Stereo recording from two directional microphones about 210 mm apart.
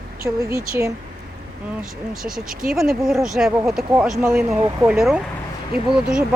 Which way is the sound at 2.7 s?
Centre (ahead or behind).